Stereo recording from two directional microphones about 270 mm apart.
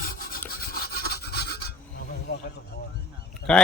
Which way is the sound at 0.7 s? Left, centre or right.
Left.